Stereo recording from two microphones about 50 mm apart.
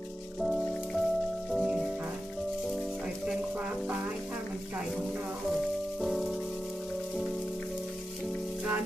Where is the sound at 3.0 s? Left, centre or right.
Right.